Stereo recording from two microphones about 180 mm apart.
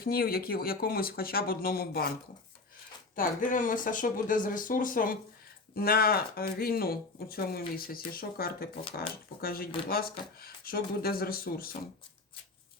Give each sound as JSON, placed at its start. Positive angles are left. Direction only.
{"t": 0.0, "sound": "speech", "side_deg": 55}
{"t": 3.2, "sound": "speech", "side_deg": 45}